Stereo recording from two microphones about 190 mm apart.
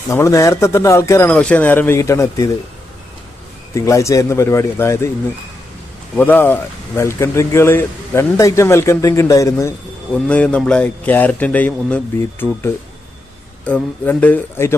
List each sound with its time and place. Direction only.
0.1 s speech: 15° left (ahead or behind)
3.8 s speech: 15° left (ahead or behind)
6.1 s speech: 10° left (ahead or behind)
10.2 s speech: 5° left (ahead or behind)